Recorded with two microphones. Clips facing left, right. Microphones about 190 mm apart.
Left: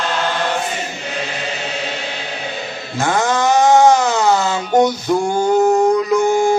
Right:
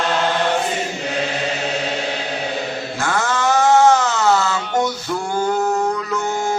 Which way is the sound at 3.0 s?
20° left (ahead or behind).